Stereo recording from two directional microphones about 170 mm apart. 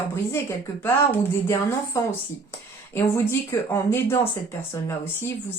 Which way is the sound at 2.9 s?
15° left (ahead or behind).